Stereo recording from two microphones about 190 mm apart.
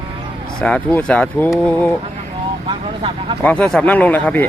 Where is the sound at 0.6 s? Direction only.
5° left (ahead or behind).